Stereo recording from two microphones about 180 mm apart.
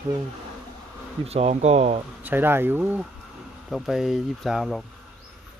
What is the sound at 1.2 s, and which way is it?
Speech, 35° right (ahead or behind).